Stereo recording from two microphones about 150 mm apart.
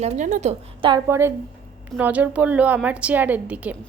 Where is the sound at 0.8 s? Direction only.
30° right (ahead or behind).